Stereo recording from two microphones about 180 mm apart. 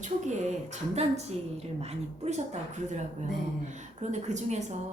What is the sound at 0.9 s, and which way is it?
A woman's voice, 35° right (ahead or behind).